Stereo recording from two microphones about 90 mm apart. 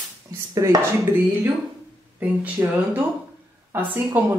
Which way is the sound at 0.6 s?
35° right (ahead or behind).